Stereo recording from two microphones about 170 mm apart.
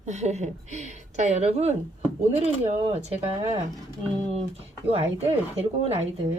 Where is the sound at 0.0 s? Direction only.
40° right (ahead or behind).